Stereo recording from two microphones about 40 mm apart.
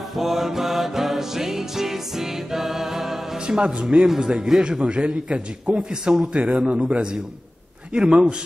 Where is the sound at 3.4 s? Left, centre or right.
Right.